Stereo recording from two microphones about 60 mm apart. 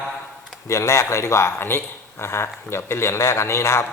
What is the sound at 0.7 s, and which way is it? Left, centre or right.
Speech, left.